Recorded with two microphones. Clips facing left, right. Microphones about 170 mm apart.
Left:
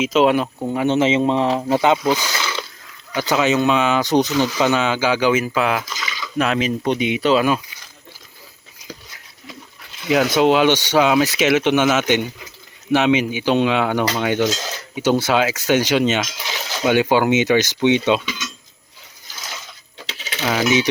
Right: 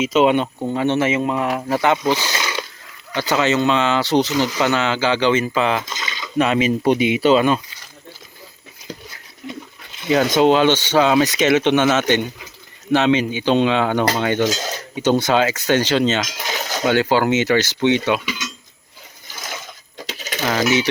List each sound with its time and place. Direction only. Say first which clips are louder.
0.0 s speech: even; centre (ahead or behind); by 2.1 s 15° left (ahead or behind)
2.3 s wild animals: right 1 dB; 15° right (ahead or behind)
3.3 s speech: even; 10° left (ahead or behind)
5.8 s a sound: even; 20° right (ahead or behind)
6.4 s speech: right 3 dB; centre (ahead or behind)
10.1 s speech: right 1 dB; 5° left (ahead or behind)
16.4 s coin: right 3 dB; 45° right (ahead or behind)
16.8 s speech: left 1 dB; 15° left (ahead or behind)
19.3 s sewing machine: right 3 dB; 50° right (ahead or behind)
20.0 s coin: right 4 dB; 40° right (ahead or behind)
20.4 s speech: even; 10° left (ahead or behind)